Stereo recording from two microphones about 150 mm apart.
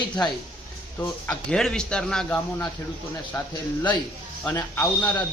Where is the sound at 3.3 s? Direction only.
20° left (ahead or behind).